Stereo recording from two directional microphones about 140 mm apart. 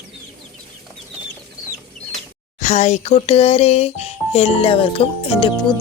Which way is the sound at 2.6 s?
55° left (ahead or behind).